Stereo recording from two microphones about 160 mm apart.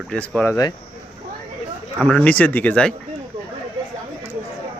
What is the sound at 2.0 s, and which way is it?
Speech, centre (ahead or behind).